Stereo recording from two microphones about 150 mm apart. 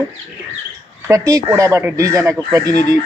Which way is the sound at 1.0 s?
20° right (ahead or behind).